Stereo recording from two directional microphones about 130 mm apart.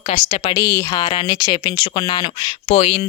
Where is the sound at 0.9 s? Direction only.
35° left (ahead or behind).